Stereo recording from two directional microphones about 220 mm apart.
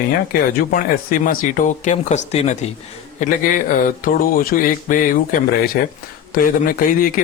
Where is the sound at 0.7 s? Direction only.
40° left (ahead or behind).